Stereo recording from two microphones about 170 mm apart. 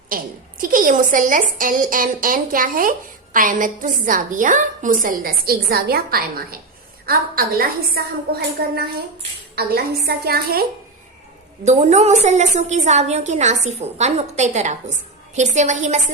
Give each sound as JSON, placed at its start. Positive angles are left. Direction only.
{"t": 0.1, "sound": "a woman's voice", "side_deg": -55}
{"t": 11.6, "sound": "a woman's voice", "side_deg": -40}